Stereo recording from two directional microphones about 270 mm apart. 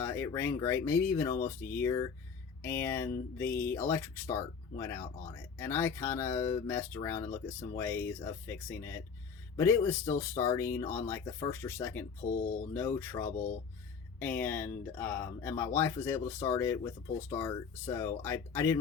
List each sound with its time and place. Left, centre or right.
0.0 s speech: centre
1.3 s speech: left
1.8 s speech: centre
12.2 s speech: left
12.7 s speech: centre